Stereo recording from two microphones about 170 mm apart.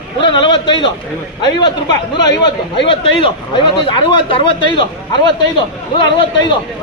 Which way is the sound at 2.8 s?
30° left (ahead or behind).